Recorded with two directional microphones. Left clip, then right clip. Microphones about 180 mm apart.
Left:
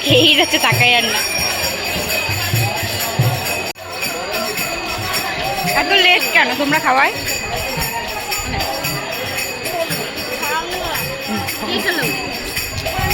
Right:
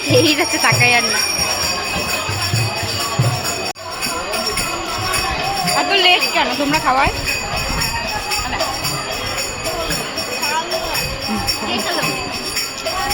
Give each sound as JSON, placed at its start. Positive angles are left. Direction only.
{"t": 0.1, "sound": "speech", "side_deg": 10}
{"t": 5.7, "sound": "speech", "side_deg": 5}